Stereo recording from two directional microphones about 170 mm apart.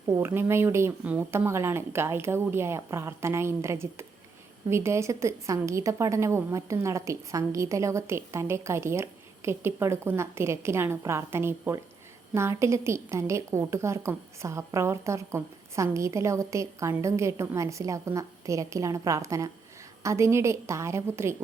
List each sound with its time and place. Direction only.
0.2 s a woman's voice: 15° right (ahead or behind)